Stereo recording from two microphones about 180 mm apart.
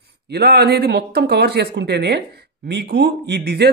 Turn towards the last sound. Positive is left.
turn(degrees=-65)  # may be behind; listen again after turning